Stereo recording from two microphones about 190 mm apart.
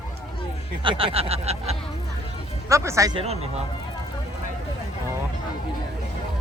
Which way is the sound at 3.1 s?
35° right (ahead or behind).